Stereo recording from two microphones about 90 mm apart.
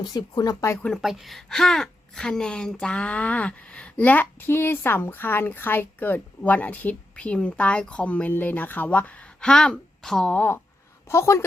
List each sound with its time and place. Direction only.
0.1 s speech: 45° left (ahead or behind)
1.0 s a woman's voice: centre (ahead or behind); by 10.6 s 20° left (ahead or behind)
11.1 s a woman's voice: 30° left (ahead or behind)